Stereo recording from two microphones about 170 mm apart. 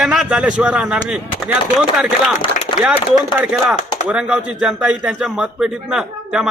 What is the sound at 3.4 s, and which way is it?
Speech, centre (ahead or behind).